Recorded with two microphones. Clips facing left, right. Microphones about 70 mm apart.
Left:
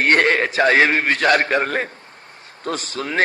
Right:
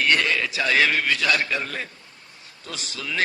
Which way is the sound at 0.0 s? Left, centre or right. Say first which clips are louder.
Left 6 dB; left.